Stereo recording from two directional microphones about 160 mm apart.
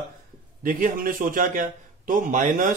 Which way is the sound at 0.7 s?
60° right (ahead or behind).